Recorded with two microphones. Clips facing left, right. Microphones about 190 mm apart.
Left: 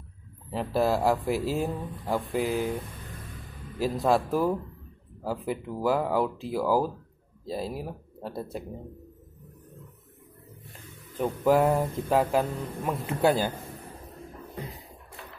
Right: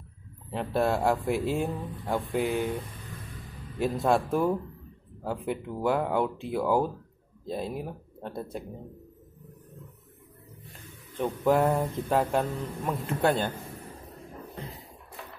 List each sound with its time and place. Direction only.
0.5 s speech: centre (ahead or behind)
11.1 s speech: 5° left (ahead or behind)